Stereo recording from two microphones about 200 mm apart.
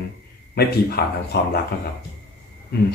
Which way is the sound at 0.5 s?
50° left (ahead or behind).